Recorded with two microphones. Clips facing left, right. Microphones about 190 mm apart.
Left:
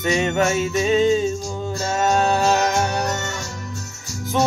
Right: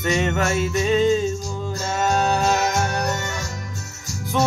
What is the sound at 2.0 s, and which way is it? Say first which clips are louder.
Music: left 2 dB; 35° left (ahead or behind).